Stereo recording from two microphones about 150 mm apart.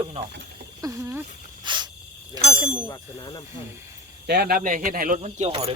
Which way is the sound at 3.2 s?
25° left (ahead or behind).